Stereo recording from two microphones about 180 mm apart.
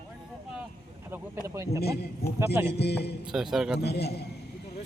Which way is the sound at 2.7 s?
65° left (ahead or behind).